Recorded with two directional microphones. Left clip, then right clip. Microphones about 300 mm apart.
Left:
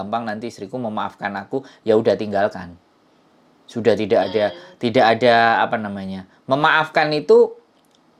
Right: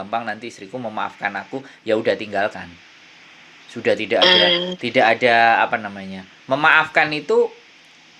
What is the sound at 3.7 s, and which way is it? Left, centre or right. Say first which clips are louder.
Speech: left 2 dB; left.